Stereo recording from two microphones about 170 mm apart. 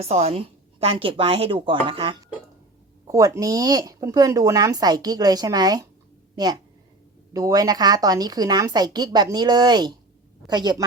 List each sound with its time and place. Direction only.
0.0 s a woman's voice: 35° right (ahead or behind)
3.1 s a woman's voice: 20° right (ahead or behind)